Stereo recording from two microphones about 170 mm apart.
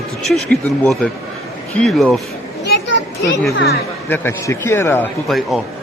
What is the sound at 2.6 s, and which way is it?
Speech, 90° left.